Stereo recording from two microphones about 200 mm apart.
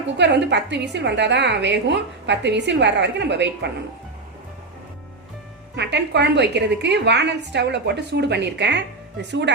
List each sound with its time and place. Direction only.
0.2 s a woman's voice: 60° right (ahead or behind)
5.7 s a woman's voice: 60° right (ahead or behind)